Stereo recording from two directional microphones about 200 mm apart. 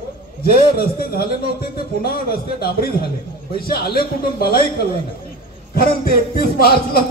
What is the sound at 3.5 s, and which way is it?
A man's voice, 50° left (ahead or behind).